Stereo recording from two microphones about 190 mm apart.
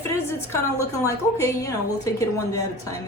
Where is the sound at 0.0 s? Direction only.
15° left (ahead or behind).